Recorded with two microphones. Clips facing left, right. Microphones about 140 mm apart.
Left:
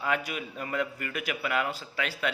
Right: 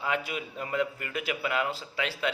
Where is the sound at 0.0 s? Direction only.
25° right (ahead or behind).